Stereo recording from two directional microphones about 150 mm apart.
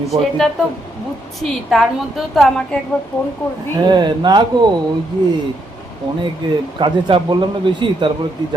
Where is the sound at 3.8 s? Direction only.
30° right (ahead or behind).